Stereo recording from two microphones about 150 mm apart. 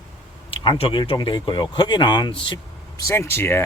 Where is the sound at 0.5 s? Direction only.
35° left (ahead or behind).